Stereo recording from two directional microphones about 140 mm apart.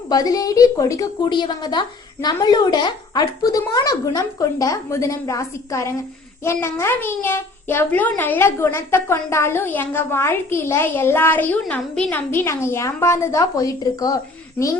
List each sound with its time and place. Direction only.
0.1 s a woman's voice: 25° left (ahead or behind)